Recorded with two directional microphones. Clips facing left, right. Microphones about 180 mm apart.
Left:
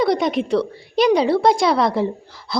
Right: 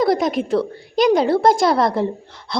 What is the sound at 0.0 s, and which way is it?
A woman's voice, centre (ahead or behind).